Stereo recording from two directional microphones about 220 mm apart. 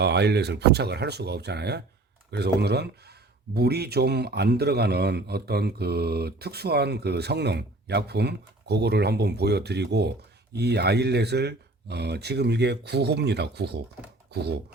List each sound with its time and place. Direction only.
0.0 s speech: 50° right (ahead or behind)